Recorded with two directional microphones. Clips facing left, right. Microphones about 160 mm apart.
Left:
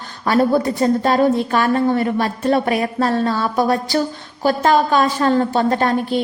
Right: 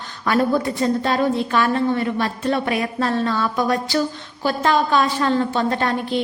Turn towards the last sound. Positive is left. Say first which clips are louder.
# left 4 dB
turn(degrees=40)  # may be behind; listen again after turning